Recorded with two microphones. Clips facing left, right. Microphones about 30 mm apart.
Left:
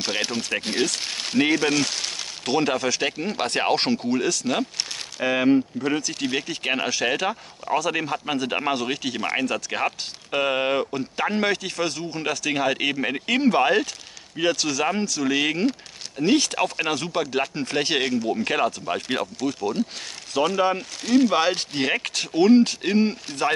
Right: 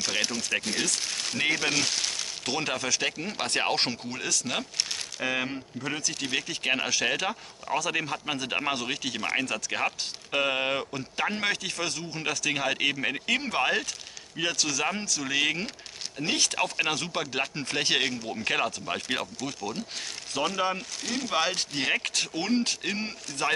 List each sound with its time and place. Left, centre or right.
0.0 s speech: centre
0.3 s speech: left
1.5 s speech: centre